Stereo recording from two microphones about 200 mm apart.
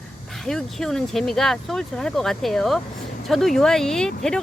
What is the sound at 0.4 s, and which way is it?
Speech, centre (ahead or behind).